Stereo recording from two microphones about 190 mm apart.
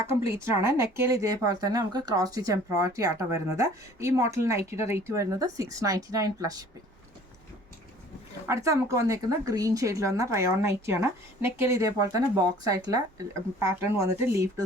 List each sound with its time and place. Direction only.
0.3 s speech: 15° right (ahead or behind)
8.4 s speech: 15° right (ahead or behind)